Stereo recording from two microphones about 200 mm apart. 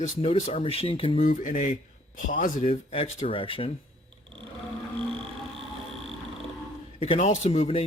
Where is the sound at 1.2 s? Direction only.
40° left (ahead or behind).